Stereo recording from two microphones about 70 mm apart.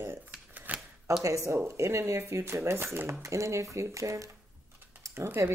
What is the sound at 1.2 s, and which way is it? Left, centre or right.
A woman's voice, right.